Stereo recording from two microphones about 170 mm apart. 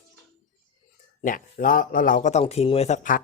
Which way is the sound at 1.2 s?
55° left (ahead or behind).